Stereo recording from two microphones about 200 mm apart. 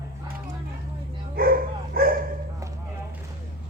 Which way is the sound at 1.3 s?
45° right (ahead or behind).